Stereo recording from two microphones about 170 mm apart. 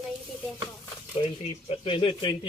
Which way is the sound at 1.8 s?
30° left (ahead or behind).